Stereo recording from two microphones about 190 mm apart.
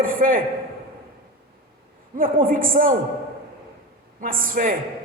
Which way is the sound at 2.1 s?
45° right (ahead or behind).